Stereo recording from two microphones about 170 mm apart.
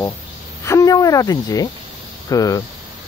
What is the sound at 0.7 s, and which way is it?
Speech, 20° left (ahead or behind).